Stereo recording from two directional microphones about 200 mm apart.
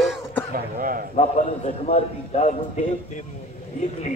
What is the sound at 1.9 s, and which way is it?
Speech, 30° left (ahead or behind).